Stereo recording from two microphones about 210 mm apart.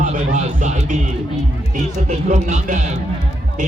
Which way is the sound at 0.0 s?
35° right (ahead or behind).